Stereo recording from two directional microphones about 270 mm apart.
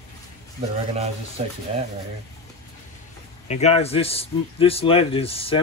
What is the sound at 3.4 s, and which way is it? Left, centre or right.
A man's voice, left.